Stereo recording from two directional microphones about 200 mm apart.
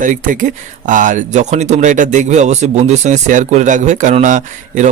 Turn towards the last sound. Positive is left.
turn(degrees=-40)  # may be behind; listen again after turning